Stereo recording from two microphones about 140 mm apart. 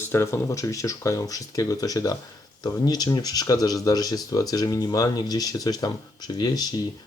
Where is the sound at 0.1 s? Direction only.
20° left (ahead or behind).